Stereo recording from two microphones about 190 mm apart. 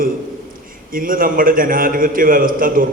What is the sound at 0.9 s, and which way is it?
A man's voice, 45° right (ahead or behind).